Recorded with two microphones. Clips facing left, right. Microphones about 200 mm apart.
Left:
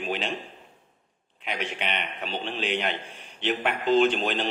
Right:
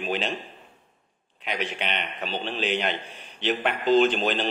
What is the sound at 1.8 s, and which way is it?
Speech, centre (ahead or behind).